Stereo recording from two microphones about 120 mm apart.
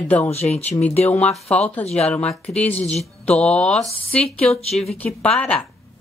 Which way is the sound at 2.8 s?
65° left (ahead or behind).